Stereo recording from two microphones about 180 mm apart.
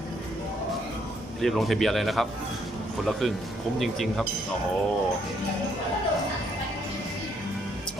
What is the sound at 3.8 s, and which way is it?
Speech, centre (ahead or behind).